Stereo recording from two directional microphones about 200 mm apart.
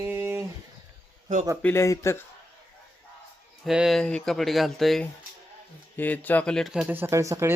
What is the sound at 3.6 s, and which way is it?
Speech, centre (ahead or behind).